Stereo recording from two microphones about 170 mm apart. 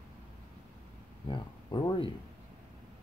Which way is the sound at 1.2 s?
30° left (ahead or behind).